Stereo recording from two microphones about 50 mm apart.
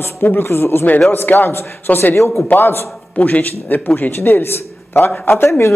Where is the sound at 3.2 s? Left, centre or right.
Left.